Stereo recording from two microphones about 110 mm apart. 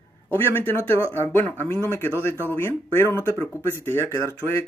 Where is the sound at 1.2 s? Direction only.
20° left (ahead or behind).